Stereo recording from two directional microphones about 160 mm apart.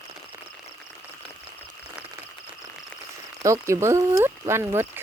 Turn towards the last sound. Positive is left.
turn(degrees=-15)  # may be behind; listen again after turning